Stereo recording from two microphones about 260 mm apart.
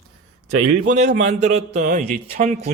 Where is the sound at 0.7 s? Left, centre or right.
Right.